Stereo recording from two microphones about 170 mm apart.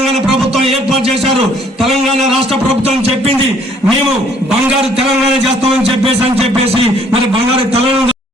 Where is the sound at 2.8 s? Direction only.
40° right (ahead or behind).